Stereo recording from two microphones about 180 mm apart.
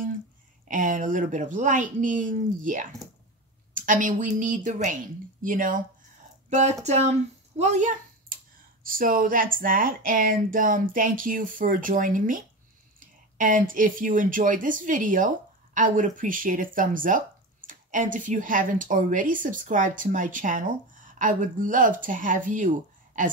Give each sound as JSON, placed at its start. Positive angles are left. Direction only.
{"t": 0.7, "sound": "speech", "side_deg": -45}